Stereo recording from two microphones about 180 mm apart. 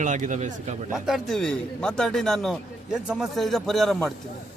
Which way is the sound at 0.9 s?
Centre (ahead or behind).